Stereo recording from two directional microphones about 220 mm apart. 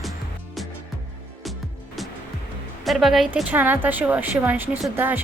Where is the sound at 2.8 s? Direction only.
Centre (ahead or behind).